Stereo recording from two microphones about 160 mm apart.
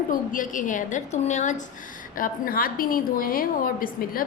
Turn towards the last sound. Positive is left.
turn(degrees=60)  # may be behind; listen again after turning